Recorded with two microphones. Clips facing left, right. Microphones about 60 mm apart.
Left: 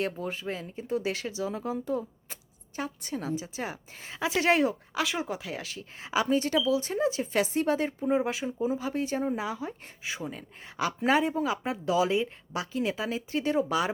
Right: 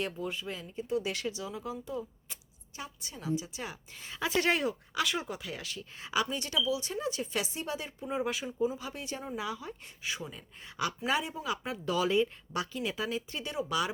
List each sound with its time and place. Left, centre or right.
0.3 s speech: left
8.1 s speech: left
11.9 s speech: centre